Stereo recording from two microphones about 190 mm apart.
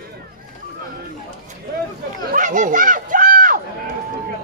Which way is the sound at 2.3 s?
45° right (ahead or behind).